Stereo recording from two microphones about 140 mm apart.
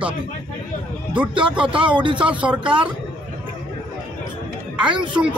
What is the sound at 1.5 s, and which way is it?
Speech, 10° right (ahead or behind).